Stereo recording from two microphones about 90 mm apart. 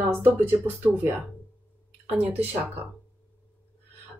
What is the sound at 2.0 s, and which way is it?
Speech, 20° right (ahead or behind).